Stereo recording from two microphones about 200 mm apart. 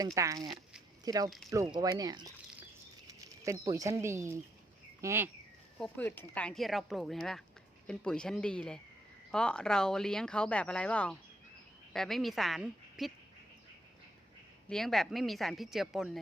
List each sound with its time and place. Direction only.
0.0 s speech: 15° right (ahead or behind)
3.1 s a sound: 15° right (ahead or behind)
3.7 s speech: 15° right (ahead or behind)
5.7 s speech: 5° left (ahead or behind)
14.7 s speech: centre (ahead or behind)